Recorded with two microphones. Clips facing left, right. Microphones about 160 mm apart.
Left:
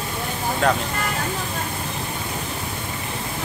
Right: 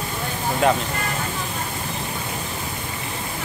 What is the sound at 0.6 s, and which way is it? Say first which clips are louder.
Speech: right 2 dB; 5° right (ahead or behind).